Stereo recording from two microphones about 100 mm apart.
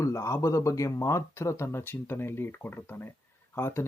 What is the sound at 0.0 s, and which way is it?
Speech, 30° left (ahead or behind).